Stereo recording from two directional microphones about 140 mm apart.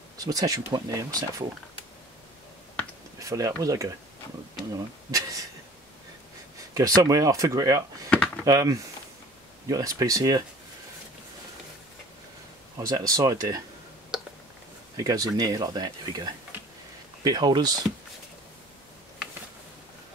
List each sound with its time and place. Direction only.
0.2 s speech: 25° right (ahead or behind)
3.2 s speech: 25° right (ahead or behind)
7.0 s speech: 25° right (ahead or behind)
8.1 s a sound: 10° left (ahead or behind)
8.5 s speech: 25° right (ahead or behind)
12.7 s speech: 30° right (ahead or behind)
15.0 s speech: 25° right (ahead or behind)